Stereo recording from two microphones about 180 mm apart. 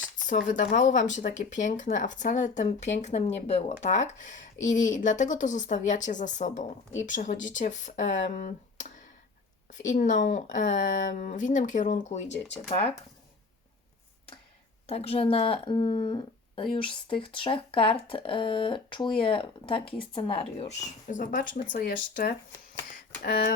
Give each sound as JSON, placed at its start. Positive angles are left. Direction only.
{"t": 0.3, "sound": "speech", "side_deg": 45}
{"t": 14.8, "sound": "speech", "side_deg": 35}
{"t": 21.1, "sound": "speech", "side_deg": 45}